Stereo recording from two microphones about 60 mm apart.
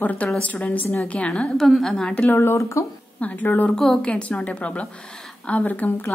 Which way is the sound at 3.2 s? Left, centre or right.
Left.